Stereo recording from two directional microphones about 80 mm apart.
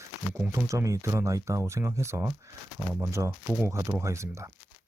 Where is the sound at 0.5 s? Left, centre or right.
Right.